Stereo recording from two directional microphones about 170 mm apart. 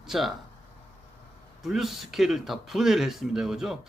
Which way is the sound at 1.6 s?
Centre (ahead or behind).